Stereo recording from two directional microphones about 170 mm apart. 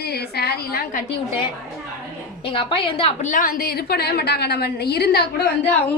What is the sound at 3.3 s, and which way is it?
A woman's voice, 55° left (ahead or behind).